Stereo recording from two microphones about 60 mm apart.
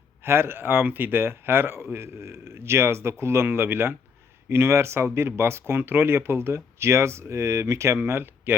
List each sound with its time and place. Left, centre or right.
0.2 s speech: right
7.9 s speech: right